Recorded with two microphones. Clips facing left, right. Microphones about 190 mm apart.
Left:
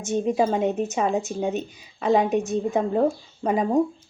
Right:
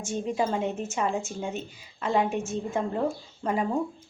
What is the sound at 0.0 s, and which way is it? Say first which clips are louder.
A woman's voice: left 6 dB; 20° left (ahead or behind).